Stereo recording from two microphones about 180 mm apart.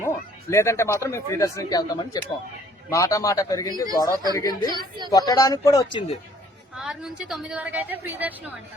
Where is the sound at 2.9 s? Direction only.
20° left (ahead or behind).